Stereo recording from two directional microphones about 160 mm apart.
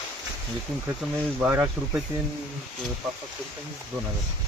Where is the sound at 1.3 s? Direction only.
10° right (ahead or behind).